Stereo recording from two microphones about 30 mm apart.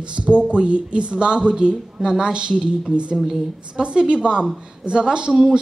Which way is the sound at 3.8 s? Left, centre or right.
Right.